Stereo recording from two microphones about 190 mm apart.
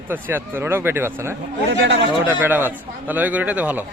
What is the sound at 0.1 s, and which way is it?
A man's voice, 10° right (ahead or behind).